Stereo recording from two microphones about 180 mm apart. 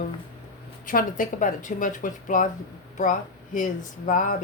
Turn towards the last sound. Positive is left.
turn(degrees=45)  # may be behind; listen again after turning